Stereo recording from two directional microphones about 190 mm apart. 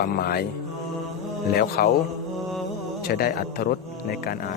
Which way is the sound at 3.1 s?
55° left (ahead or behind).